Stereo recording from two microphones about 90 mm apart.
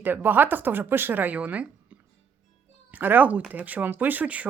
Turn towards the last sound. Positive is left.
turn(degrees=-15)  # may be behind; listen again after turning